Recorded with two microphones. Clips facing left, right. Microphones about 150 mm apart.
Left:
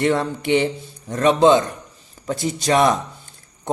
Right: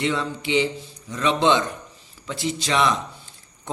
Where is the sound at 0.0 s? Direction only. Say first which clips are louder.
Left 5 dB; 55° left (ahead or behind).